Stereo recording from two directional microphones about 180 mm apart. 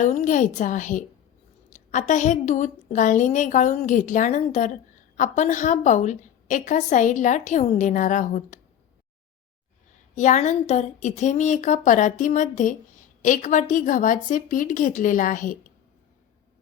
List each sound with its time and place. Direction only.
0.0 s a woman's voice: 40° left (ahead or behind)
10.2 s a woman's voice: 40° left (ahead or behind)